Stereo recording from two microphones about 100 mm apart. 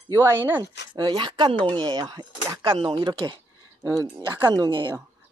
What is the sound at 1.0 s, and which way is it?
Speech, 50° right (ahead or behind).